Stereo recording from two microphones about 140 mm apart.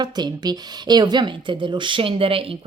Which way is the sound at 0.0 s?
30° right (ahead or behind).